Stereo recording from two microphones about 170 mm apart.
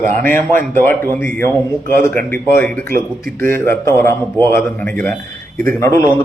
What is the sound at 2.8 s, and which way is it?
Speech, 60° right (ahead or behind).